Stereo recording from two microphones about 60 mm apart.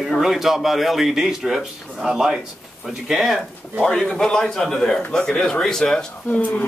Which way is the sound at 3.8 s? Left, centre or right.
Centre.